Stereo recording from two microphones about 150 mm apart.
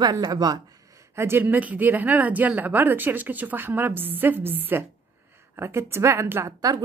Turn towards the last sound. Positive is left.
turn(degrees=-20)  # may be behind; listen again after turning